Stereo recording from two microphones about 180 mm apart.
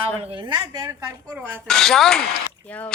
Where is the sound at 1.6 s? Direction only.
Centre (ahead or behind).